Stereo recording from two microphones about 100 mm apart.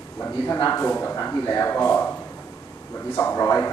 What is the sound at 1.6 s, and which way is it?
Speech, 20° left (ahead or behind).